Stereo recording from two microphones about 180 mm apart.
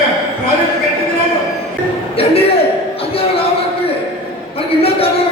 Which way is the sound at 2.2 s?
30° left (ahead or behind).